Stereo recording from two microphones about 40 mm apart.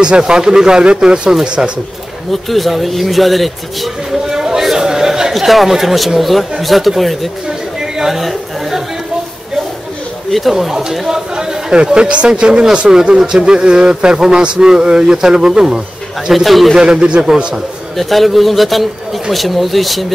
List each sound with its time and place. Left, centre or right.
0.3 s a man's voice: centre
2.3 s speech: centre
4.3 s a sound: centre
5.3 s speech: centre
7.4 s chatter: centre
11.1 s a man's voice: centre
13.1 s a man's voice: centre
16.3 s speech: centre
16.7 s a man's voice: right
17.9 s speech: centre